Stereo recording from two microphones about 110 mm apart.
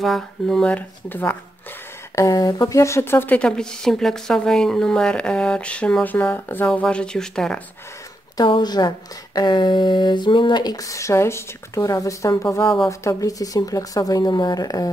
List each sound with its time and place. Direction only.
0.0 s speech: 5° left (ahead or behind)
2.1 s speech: 30° left (ahead or behind); by 7.6 s 5° left (ahead or behind)
8.5 s speech: 40° left (ahead or behind)